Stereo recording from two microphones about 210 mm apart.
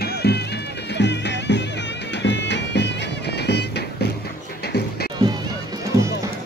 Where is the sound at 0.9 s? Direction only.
55° left (ahead or behind).